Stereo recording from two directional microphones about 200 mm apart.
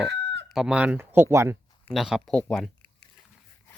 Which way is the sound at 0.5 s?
5° right (ahead or behind).